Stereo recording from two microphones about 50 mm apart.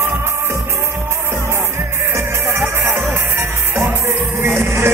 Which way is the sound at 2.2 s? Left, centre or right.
Right.